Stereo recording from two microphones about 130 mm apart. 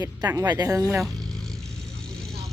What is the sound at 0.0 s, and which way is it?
Speech, 25° right (ahead or behind).